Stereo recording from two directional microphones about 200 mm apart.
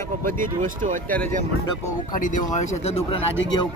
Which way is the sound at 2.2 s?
40° left (ahead or behind).